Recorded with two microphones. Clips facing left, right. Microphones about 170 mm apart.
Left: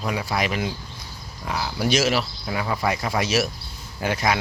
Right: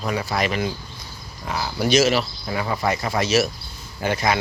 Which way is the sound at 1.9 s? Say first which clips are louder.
Right 4 dB; 10° left (ahead or behind).